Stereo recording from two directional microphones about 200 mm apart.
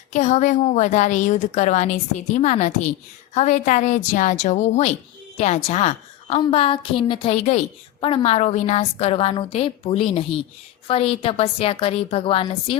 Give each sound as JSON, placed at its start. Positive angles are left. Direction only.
{"t": 0.1, "sound": "a woman's voice", "side_deg": 35}